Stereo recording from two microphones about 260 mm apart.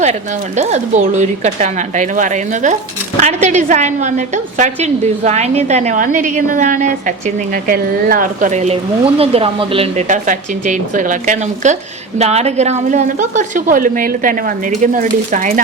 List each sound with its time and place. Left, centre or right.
0.0 s speech: right